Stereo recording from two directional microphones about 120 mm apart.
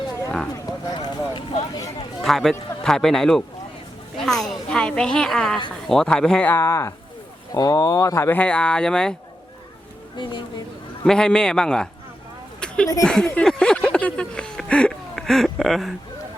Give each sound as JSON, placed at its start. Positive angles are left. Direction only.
{"t": 0.5, "sound": "vehicle", "side_deg": 35}
{"t": 2.2, "sound": "a man's voice", "side_deg": 0}
{"t": 11.0, "sound": "a man's voice", "side_deg": 5}
{"t": 12.5, "sound": "a sound", "side_deg": 5}
{"t": 13.1, "sound": "speech", "side_deg": 5}